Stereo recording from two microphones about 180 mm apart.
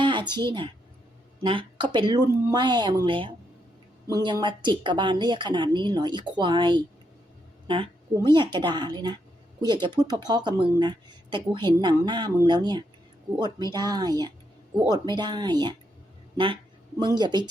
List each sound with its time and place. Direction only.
0.0 s speech: 25° right (ahead or behind)
8.1 s speech: 25° right (ahead or behind)
17.2 s speech: 25° right (ahead or behind)